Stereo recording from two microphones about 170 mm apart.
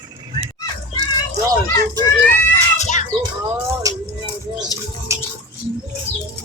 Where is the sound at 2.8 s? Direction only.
45° left (ahead or behind).